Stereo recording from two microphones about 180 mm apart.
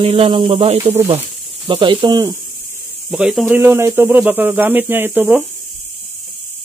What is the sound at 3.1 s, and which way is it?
Speech, centre (ahead or behind).